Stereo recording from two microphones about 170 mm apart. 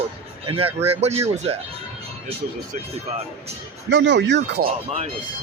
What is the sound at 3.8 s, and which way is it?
Speech, 90° right.